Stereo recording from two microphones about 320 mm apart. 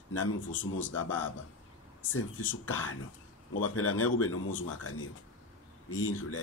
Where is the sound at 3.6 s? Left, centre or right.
Left.